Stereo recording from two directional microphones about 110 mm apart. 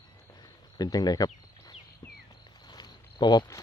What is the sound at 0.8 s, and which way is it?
Speech, 35° left (ahead or behind).